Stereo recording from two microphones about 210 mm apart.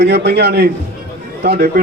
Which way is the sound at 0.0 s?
50° right (ahead or behind).